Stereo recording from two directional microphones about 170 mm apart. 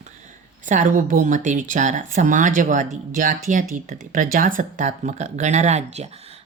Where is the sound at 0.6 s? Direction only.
50° right (ahead or behind).